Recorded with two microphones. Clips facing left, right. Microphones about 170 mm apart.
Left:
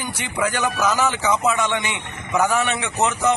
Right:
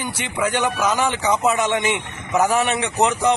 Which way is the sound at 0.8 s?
30° right (ahead or behind).